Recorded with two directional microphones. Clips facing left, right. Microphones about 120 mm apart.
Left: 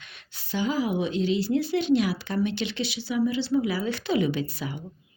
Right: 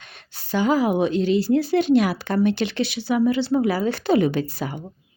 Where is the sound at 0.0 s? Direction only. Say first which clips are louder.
Right 4 dB; 40° right (ahead or behind).